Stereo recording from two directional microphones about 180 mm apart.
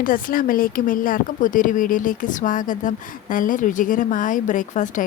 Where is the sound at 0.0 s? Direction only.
50° left (ahead or behind).